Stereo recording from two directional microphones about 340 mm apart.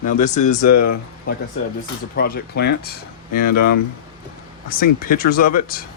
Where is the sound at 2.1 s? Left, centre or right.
Left.